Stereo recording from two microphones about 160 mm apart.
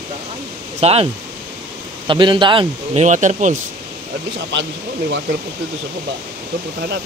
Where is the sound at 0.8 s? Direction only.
40° right (ahead or behind).